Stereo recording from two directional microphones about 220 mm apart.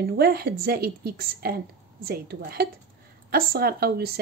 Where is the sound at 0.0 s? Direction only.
45° right (ahead or behind).